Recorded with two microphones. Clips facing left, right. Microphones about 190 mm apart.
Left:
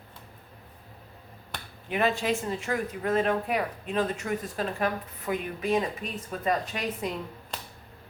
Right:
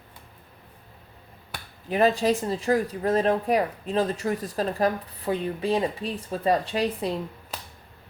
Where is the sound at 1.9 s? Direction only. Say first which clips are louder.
Right 5 dB; 35° right (ahead or behind).